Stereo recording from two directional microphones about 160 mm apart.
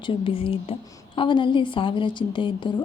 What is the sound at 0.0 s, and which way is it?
A woman's voice, 35° left (ahead or behind).